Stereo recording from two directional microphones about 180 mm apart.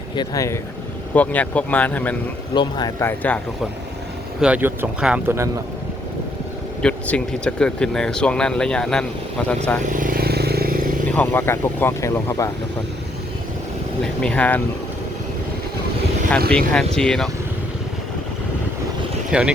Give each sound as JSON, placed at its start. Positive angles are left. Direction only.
{"t": 0.2, "sound": "speech", "side_deg": 15}
{"t": 2.6, "sound": "speech", "side_deg": 25}
{"t": 3.0, "sound": "speech", "side_deg": 10}
{"t": 4.4, "sound": "speech", "side_deg": -5}
{"t": 6.8, "sound": "speech", "side_deg": 5}
{"t": 9.8, "sound": "vehicle", "side_deg": -50}
{"t": 11.1, "sound": "speech", "side_deg": 10}
{"t": 14.0, "sound": "speech", "side_deg": 5}
{"t": 16.5, "sound": "speech", "side_deg": 5}
{"t": 19.3, "sound": "speech", "side_deg": -5}